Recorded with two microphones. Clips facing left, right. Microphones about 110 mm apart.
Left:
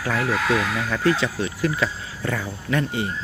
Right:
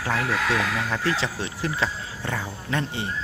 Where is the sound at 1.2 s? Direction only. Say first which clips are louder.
Left 4 dB; 25° right (ahead or behind).